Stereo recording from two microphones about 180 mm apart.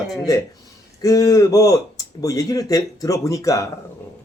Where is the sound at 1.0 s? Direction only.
20° left (ahead or behind).